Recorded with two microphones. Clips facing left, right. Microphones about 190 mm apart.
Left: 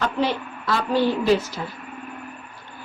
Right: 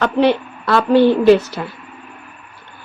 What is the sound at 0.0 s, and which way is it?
Speech, 70° right (ahead or behind).